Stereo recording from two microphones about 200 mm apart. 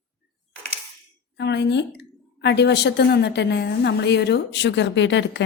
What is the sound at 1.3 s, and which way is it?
A woman's voice, 60° left (ahead or behind).